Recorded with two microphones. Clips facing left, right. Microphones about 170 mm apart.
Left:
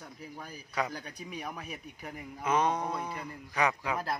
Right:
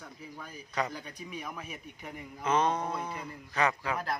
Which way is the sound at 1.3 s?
40° left (ahead or behind).